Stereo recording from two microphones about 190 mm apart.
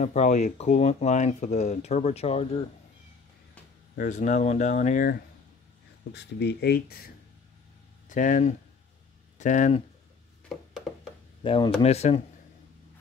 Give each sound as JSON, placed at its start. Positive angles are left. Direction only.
{"t": 0.0, "sound": "speech", "side_deg": 40}
{"t": 3.9, "sound": "speech", "side_deg": 45}
{"t": 6.1, "sound": "speech", "side_deg": 60}
{"t": 8.1, "sound": "speech", "side_deg": 40}
{"t": 10.5, "sound": "a sound", "side_deg": 0}
{"t": 11.4, "sound": "speech", "side_deg": 30}